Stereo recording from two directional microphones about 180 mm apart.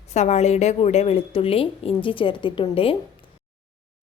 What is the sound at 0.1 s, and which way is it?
A woman's voice, 40° left (ahead or behind).